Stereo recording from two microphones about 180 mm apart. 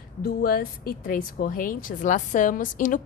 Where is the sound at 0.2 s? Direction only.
55° left (ahead or behind).